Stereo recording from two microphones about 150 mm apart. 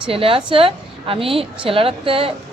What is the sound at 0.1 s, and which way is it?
A woman's voice, 40° right (ahead or behind).